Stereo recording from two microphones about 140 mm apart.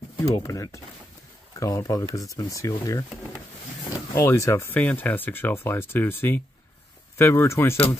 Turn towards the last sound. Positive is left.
turn(degrees=20)  # may be behind; listen again after turning